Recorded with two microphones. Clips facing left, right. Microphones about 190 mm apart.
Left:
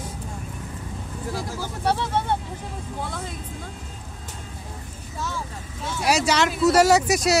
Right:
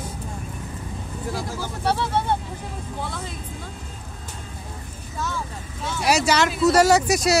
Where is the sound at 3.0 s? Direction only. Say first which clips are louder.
Even; 45° left (ahead or behind).